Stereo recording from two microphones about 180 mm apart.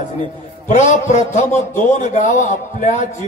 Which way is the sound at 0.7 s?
45° left (ahead or behind).